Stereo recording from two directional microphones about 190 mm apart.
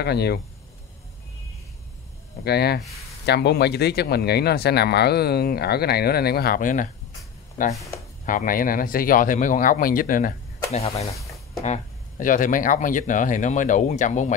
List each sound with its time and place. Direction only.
0.0 s speech: 60° left (ahead or behind)
2.4 s speech: 60° left (ahead or behind)
8.3 s speech: 45° left (ahead or behind)